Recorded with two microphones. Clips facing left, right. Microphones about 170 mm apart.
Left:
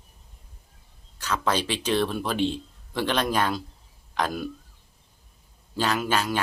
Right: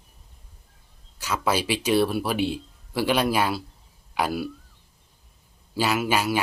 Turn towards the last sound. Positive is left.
turn(degrees=-10)  # may be behind; listen again after turning